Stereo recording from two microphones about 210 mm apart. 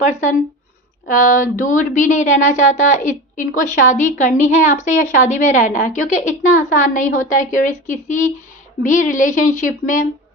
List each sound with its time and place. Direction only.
1.0 s a woman's voice: 40° left (ahead or behind)